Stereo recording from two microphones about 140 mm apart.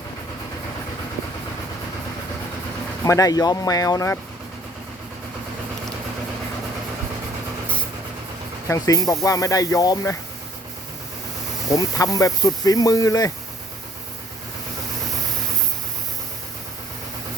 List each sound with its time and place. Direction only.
3.0 s speech: 25° left (ahead or behind)
8.6 s speech: 25° left (ahead or behind)
11.7 s speech: 25° left (ahead or behind)